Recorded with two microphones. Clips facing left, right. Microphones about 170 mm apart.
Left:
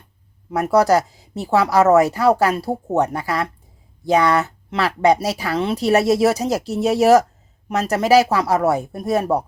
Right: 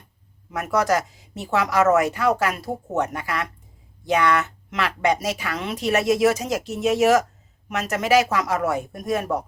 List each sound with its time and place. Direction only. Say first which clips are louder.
0.5 s speech: left 6 dB; 35° left (ahead or behind)